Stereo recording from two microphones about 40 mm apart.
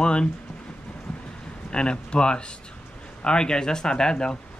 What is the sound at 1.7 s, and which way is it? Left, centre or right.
Speech, left.